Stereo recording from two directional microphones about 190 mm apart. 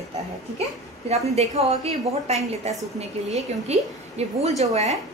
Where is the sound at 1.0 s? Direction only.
35° right (ahead or behind).